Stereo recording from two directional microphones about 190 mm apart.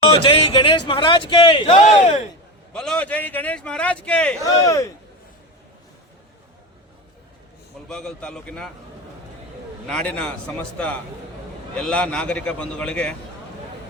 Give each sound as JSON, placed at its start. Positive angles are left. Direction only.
{"t": 0.0, "sound": "speech", "side_deg": 25}
{"t": 2.7, "sound": "a man's voice", "side_deg": 5}
{"t": 4.4, "sound": "a man's voice", "side_deg": 15}
{"t": 7.9, "sound": "a man's voice", "side_deg": 5}
{"t": 9.8, "sound": "a man's voice", "side_deg": 5}